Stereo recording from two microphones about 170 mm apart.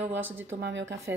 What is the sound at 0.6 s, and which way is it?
Speech, 90° right.